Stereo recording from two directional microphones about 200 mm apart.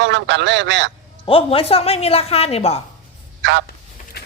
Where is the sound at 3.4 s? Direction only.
60° right (ahead or behind).